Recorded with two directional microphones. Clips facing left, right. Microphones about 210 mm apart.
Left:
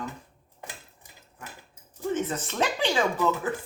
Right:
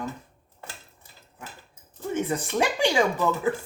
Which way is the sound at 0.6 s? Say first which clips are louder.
Left 1 dB; 15° left (ahead or behind).